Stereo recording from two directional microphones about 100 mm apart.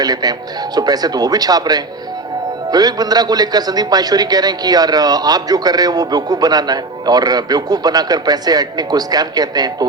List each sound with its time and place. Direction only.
0.0 s a man's voice: 40° right (ahead or behind)